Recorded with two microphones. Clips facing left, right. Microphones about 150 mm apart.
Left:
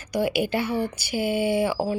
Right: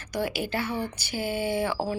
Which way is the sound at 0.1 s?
10° left (ahead or behind).